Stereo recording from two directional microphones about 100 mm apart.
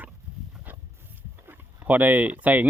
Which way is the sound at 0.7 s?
20° right (ahead or behind).